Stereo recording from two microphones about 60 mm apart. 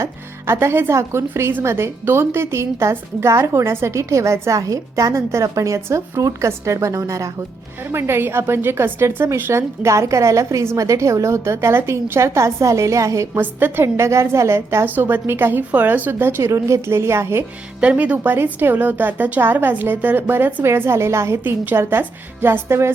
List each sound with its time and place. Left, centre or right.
0.0 s a woman's voice: right
5.1 s a woman's voice: right
7.9 s a woman's voice: right
13.4 s a woman's voice: right
14.9 s a woman's voice: right
16.5 s a woman's voice: right
17.7 s a woman's voice: right
21.4 s a woman's voice: right